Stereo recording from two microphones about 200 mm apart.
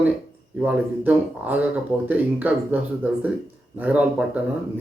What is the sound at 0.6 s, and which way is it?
Speech, 10° right (ahead or behind).